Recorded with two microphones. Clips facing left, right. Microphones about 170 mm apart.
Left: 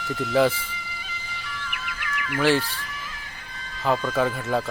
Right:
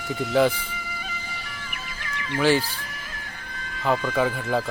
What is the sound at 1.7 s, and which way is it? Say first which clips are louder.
Music: left 3 dB; 35° right (ahead or behind).